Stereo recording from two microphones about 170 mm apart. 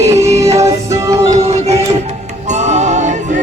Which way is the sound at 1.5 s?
40° right (ahead or behind).